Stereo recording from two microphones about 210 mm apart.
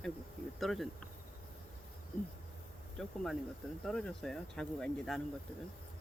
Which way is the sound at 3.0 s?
Centre (ahead or behind).